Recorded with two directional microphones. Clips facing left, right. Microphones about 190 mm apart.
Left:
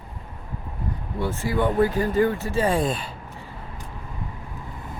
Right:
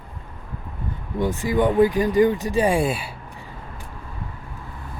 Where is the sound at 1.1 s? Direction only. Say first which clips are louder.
Right 4 dB; 15° right (ahead or behind).